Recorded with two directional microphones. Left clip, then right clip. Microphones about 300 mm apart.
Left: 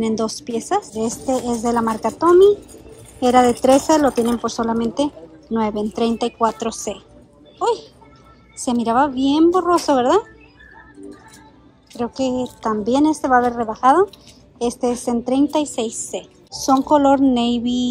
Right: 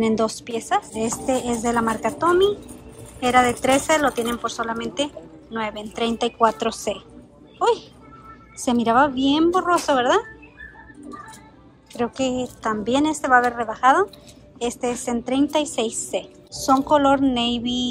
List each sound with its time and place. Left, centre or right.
0.0 s speech: centre
12.0 s speech: centre